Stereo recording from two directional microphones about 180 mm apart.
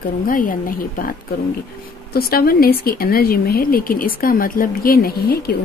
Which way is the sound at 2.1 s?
55° left (ahead or behind).